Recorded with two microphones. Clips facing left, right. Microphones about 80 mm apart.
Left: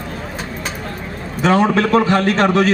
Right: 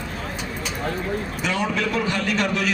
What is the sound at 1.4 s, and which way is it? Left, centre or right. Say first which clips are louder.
A man's voice: left 11 dB; left.